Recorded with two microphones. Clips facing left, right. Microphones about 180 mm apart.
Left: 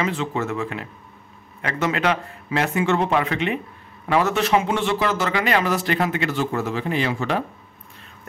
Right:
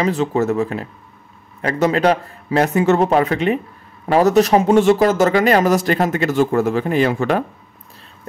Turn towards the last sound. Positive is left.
turn(degrees=-50)  # may be behind; listen again after turning